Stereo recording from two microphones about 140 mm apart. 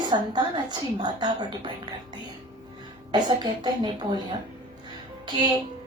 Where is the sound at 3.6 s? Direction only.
35° right (ahead or behind).